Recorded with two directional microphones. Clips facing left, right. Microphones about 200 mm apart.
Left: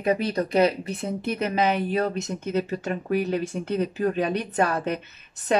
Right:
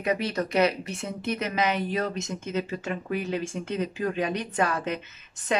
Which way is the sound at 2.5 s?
40° left (ahead or behind).